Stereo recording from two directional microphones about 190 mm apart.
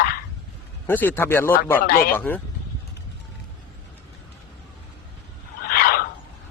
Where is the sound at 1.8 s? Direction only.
50° left (ahead or behind).